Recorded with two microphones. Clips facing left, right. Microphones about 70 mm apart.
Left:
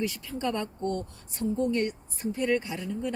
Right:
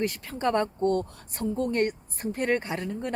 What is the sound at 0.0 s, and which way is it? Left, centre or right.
Speech, right.